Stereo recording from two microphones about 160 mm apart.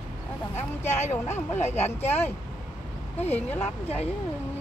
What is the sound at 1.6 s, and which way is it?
Speech, 40° left (ahead or behind).